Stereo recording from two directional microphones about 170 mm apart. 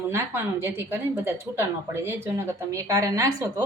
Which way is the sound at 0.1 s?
15° right (ahead or behind).